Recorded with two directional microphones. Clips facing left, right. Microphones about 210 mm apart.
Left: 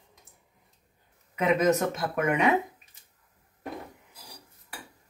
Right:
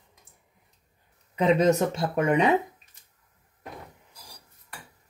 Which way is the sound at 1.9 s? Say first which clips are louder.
Right 3 dB; 30° right (ahead or behind).